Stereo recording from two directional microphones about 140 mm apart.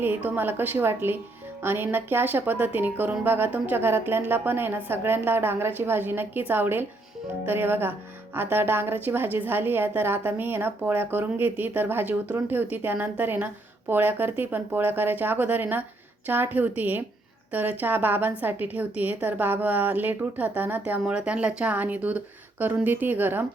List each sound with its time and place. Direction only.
0.0 s a woman's voice: 15° right (ahead or behind)